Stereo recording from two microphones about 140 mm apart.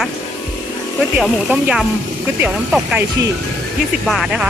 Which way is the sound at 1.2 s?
5° right (ahead or behind).